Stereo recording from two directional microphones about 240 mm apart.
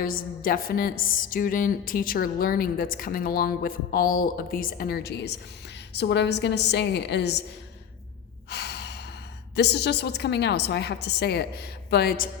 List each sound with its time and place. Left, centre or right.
0.0 s a woman's voice: left
8.4 s gasp: left
9.6 s a woman's voice: left